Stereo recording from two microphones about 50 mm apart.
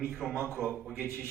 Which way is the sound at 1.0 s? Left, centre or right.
Right.